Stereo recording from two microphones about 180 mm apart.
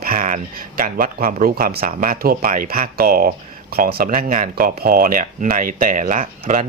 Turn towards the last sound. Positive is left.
turn(degrees=-45)  # may be behind; listen again after turning